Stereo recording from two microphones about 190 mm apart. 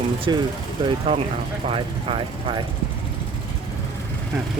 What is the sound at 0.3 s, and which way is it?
Speech, 20° right (ahead or behind).